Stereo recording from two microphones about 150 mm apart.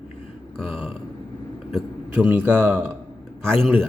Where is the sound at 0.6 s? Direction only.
5° right (ahead or behind).